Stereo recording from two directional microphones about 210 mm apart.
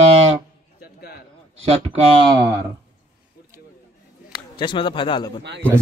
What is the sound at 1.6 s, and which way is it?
Speech, 30° right (ahead or behind).